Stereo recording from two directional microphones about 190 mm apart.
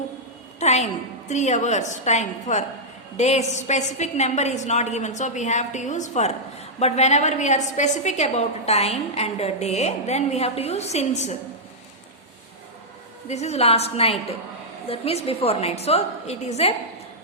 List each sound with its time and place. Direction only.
0.6 s a sound: 35° left (ahead or behind)
1.3 s a woman's voice: 40° left (ahead or behind)
13.2 s a woman's voice: 35° left (ahead or behind)